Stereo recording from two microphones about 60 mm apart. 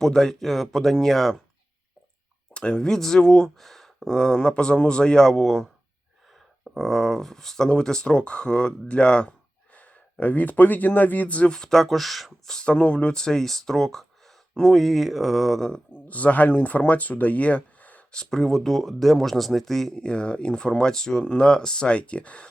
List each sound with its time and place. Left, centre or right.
0.0 s speech: centre
2.5 s speech: centre
6.7 s speech: centre; by 11.5 s left
11.5 s speech: centre
15.9 s speech: left
18.1 s speech: centre